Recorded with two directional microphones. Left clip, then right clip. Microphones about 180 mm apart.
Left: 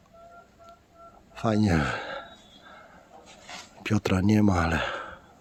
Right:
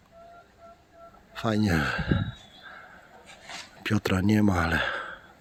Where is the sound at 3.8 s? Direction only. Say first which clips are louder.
Even; 10° left (ahead or behind).